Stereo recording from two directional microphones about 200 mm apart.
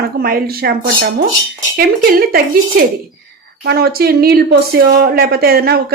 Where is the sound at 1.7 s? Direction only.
45° right (ahead or behind).